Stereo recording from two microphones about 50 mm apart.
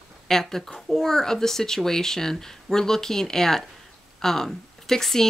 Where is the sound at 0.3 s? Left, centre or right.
Centre.